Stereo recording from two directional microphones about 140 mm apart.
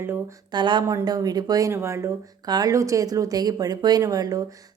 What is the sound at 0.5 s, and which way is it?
A woman's voice, 35° right (ahead or behind).